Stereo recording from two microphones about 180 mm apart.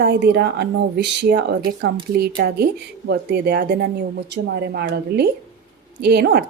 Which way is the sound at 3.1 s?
60° right (ahead or behind).